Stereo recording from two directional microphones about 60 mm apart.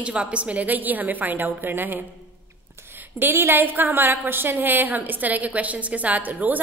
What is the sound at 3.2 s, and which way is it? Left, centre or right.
A woman's voice, right.